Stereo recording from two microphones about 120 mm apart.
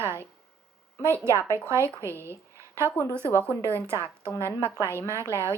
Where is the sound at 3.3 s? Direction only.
20° right (ahead or behind).